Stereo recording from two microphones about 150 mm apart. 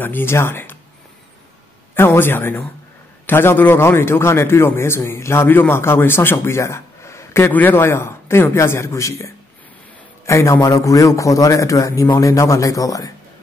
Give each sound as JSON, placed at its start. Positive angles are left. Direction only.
{"t": 0.0, "sound": "speech", "side_deg": 15}
{"t": 2.0, "sound": "a man's voice", "side_deg": 15}